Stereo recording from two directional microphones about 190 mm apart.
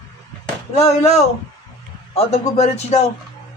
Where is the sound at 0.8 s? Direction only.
35° left (ahead or behind).